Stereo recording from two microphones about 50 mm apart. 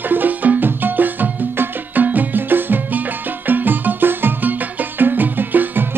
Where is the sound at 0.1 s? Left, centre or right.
Right.